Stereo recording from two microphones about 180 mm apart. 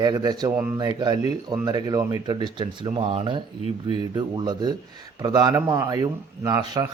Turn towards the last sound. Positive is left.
turn(degrees=-20)  # may be behind; listen again after turning